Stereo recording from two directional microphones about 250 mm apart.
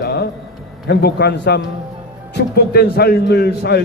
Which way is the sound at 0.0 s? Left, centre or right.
Left.